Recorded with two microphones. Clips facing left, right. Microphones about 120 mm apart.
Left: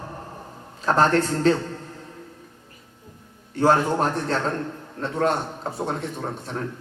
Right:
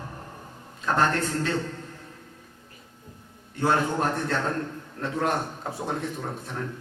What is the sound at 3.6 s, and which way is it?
A man's voice, 30° left (ahead or behind).